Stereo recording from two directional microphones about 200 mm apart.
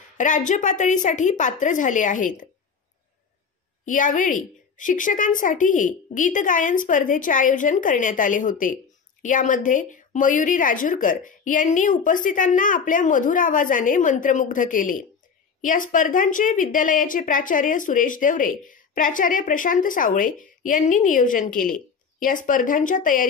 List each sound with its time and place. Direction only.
0.2 s a woman's voice: 40° left (ahead or behind)
3.8 s a woman's voice: 40° left (ahead or behind)